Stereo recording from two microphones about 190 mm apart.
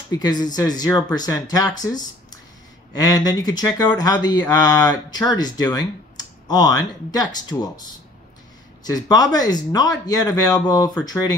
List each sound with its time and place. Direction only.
0.2 s speech: 20° left (ahead or behind)
8.8 s speech: 20° left (ahead or behind)